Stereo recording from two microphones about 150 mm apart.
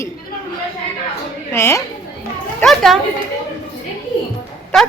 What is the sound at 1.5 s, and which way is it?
Speech, 15° left (ahead or behind).